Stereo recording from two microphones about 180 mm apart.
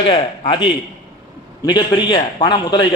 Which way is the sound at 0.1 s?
30° left (ahead or behind).